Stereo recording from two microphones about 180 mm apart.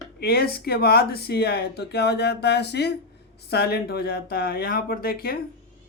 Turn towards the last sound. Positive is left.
turn(degrees=55)  # may be behind; listen again after turning